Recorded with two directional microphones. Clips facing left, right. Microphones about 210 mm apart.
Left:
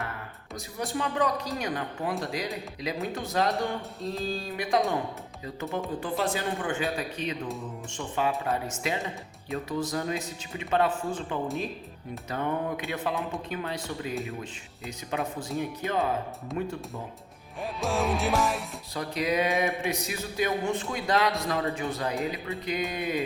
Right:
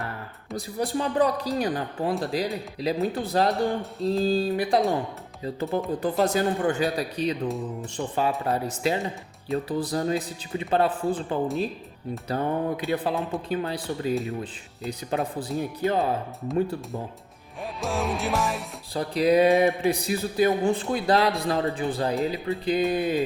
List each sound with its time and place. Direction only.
0.5 s speech: 35° right (ahead or behind)
6.0 s speech: 40° right (ahead or behind)
16.5 s music: centre (ahead or behind)
18.9 s speech: 35° right (ahead or behind)